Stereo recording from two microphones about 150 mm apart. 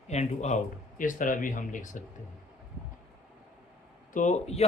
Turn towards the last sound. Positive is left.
turn(degrees=45)  # may be behind; listen again after turning